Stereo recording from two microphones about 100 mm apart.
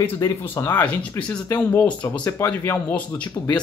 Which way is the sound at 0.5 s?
30° left (ahead or behind).